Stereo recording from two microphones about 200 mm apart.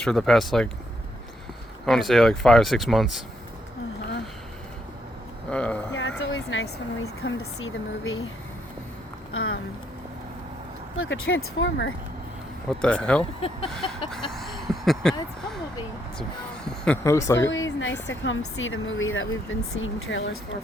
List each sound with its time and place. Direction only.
0.0 s speech: centre (ahead or behind)
1.9 s speech: centre (ahead or behind)
5.5 s speech: 5° left (ahead or behind)
5.9 s speech: 65° left (ahead or behind); by 8.2 s 80° left
9.3 s speech: 90° left
10.9 s speech: 90° left; by 11.9 s 70° left (ahead or behind)
12.8 s speech: 5° left (ahead or behind)
14.1 s a sound: centre (ahead or behind)
16.6 s a sound: 5° left (ahead or behind)
17.0 s speech: 15° left (ahead or behind)
17.5 s a woman's voice: 75° left (ahead or behind)